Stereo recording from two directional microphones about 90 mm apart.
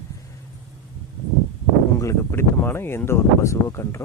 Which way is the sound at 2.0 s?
30° left (ahead or behind).